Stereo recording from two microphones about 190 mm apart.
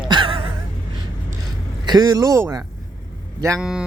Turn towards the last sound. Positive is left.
turn(degrees=-5)  # may be behind; listen again after turning